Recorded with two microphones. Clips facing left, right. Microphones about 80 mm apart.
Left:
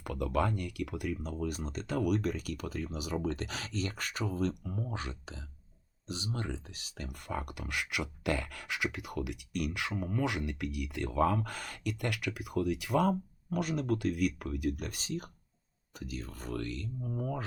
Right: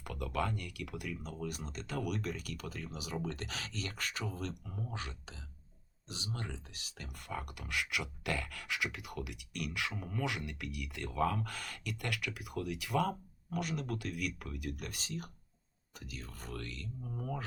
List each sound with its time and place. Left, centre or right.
0.0 s speech: left